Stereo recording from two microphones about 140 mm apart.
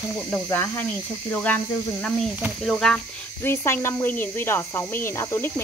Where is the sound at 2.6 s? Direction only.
5° left (ahead or behind).